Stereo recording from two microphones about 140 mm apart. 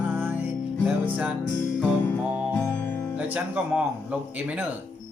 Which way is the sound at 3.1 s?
10° right (ahead or behind).